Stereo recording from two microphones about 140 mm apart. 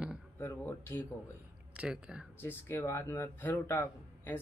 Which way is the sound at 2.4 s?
15° left (ahead or behind).